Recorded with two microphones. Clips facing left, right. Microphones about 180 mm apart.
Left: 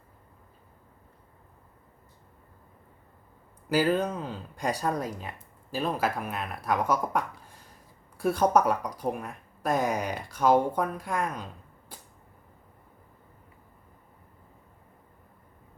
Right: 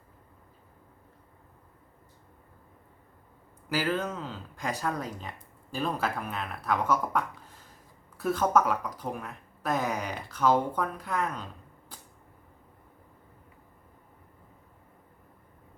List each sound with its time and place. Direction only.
3.7 s speech: 15° left (ahead or behind)